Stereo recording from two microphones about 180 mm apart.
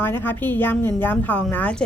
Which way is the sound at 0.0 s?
10° left (ahead or behind).